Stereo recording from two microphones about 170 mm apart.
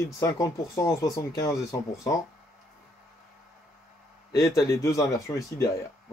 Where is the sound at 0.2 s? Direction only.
15° left (ahead or behind).